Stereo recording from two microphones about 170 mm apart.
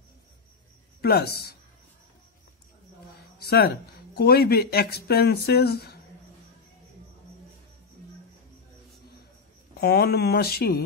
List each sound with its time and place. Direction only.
1.0 s speech: 65° left (ahead or behind)
3.3 s speech: 70° left (ahead or behind)
9.8 s speech: 70° left (ahead or behind)